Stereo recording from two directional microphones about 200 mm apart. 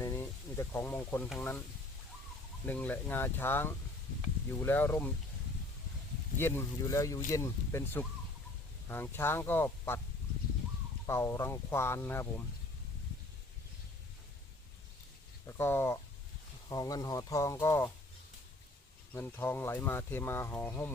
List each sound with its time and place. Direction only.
0.0 s sizzle: 15° left (ahead or behind)
1.3 s speech: 10° left (ahead or behind)
2.6 s speech: 10° left (ahead or behind)
6.4 s speech: 10° left (ahead or behind)
11.0 s speech: 15° left (ahead or behind)
15.4 s speech: 10° left (ahead or behind)
19.1 s speech: 10° left (ahead or behind)